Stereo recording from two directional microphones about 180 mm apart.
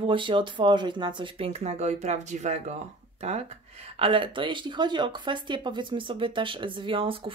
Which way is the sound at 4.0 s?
30° right (ahead or behind).